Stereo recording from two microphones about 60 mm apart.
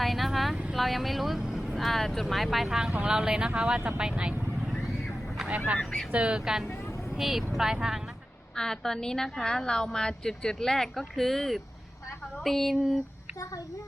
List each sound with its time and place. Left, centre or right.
0.0 s vehicle: centre
0.7 s speech: centre
4.5 s vehicle: centre
5.5 s speech: right
5.8 s speech: centre
6.1 s speech: centre
8.5 s a woman's voice: centre